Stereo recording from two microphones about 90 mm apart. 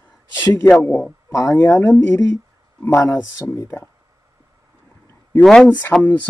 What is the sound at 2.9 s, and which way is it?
Speech, 40° left (ahead or behind).